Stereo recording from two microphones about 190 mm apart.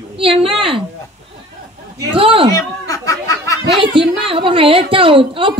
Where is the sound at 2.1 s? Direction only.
30° right (ahead or behind).